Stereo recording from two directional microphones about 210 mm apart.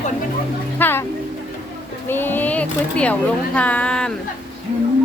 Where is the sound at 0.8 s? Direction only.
10° left (ahead or behind).